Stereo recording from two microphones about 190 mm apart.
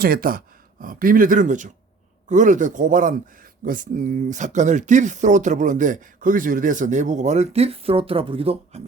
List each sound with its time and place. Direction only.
0.0 s speech: 50° right (ahead or behind); by 8.8 s 30° right (ahead or behind)